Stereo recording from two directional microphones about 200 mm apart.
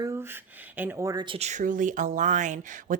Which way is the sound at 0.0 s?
15° right (ahead or behind).